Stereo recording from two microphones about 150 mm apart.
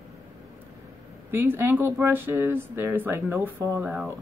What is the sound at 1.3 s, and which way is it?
A woman's voice, 15° right (ahead or behind).